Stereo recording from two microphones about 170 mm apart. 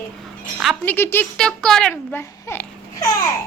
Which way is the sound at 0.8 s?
10° left (ahead or behind).